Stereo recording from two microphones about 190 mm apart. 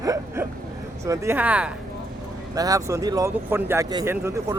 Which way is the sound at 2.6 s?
15° right (ahead or behind).